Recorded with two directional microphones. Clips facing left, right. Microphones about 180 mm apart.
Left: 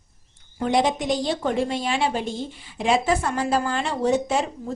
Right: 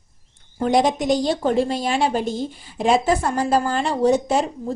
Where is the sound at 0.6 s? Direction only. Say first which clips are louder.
Right 3 dB; 40° right (ahead or behind).